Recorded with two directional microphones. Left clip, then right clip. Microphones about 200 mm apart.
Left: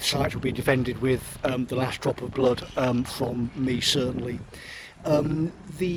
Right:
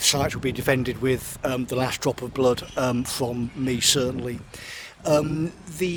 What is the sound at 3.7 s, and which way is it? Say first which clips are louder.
Speech: right 3 dB; 35° right (ahead or behind).